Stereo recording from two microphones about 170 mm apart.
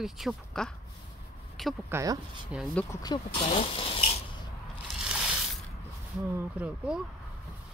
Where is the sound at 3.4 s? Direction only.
35° left (ahead or behind).